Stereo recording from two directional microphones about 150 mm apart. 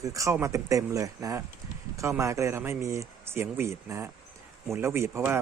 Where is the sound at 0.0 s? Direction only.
20° right (ahead or behind).